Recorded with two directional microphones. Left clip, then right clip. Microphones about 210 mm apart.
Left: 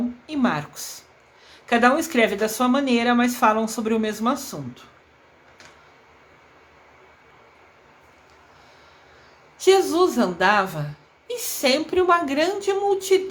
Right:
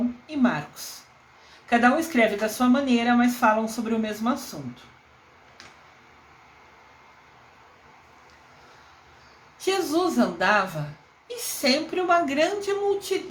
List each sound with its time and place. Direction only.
0.3 s speech: 30° left (ahead or behind)
9.6 s speech: 25° left (ahead or behind)